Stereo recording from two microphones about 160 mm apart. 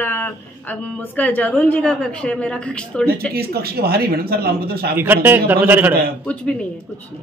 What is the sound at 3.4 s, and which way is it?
Speech, 75° right (ahead or behind).